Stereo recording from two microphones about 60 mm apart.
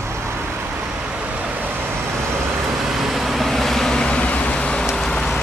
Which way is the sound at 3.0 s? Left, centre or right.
Centre.